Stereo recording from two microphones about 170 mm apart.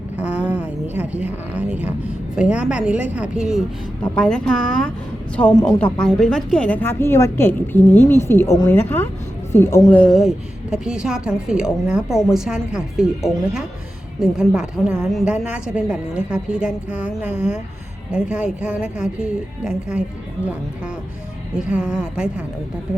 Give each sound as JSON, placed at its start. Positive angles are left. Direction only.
{"t": 0.2, "sound": "a woman's voice", "side_deg": -5}
{"t": 10.0, "sound": "a woman's voice", "side_deg": 0}
{"t": 21.7, "sound": "a woman's voice", "side_deg": -5}